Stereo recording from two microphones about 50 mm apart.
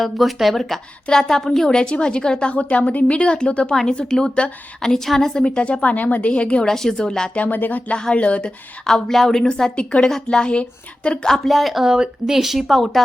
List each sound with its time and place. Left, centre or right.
0.0 s a woman's voice: centre
5.4 s a woman's voice: centre
7.3 s music: left
7.9 s a woman's voice: left
8.9 s a woman's voice: centre
11.4 s speech: centre